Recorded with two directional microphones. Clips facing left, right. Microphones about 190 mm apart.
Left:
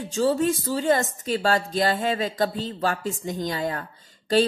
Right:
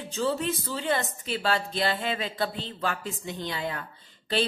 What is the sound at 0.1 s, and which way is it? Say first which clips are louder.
Speech: left 6 dB; 40° left (ahead or behind).